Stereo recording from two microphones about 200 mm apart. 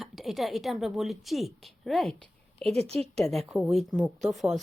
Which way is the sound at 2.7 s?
30° right (ahead or behind).